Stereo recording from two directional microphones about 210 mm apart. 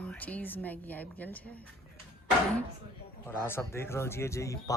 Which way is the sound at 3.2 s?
10° left (ahead or behind).